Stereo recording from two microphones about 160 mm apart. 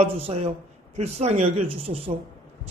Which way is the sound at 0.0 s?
40° right (ahead or behind).